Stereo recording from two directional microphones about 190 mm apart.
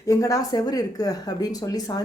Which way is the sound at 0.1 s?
15° left (ahead or behind).